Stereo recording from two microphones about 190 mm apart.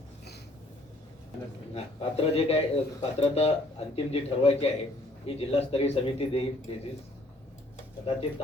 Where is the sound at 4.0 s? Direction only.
30° left (ahead or behind).